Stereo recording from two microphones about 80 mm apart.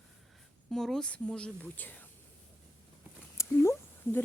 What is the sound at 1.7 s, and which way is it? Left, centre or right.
Speech, left.